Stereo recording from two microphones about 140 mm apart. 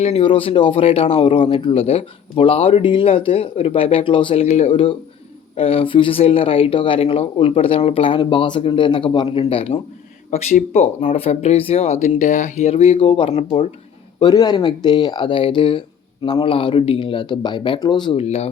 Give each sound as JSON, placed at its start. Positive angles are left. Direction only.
{"t": 0.0, "sound": "speech", "side_deg": 45}
{"t": 10.7, "sound": "speech", "side_deg": 50}